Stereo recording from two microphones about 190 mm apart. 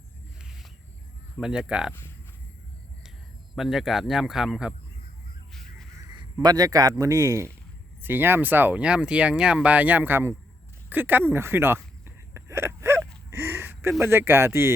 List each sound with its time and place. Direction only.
1.4 s speech: 5° right (ahead or behind)
3.5 s speech: centre (ahead or behind)
6.3 s a man's voice: 20° right (ahead or behind)
12.0 s gasp: 15° right (ahead or behind)
14.0 s speech: 10° right (ahead or behind)